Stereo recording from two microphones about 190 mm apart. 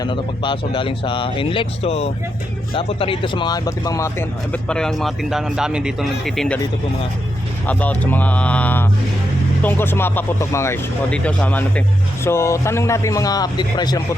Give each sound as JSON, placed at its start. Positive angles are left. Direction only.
{"t": 0.0, "sound": "speech", "side_deg": 25}
{"t": 7.7, "sound": "speech", "side_deg": 10}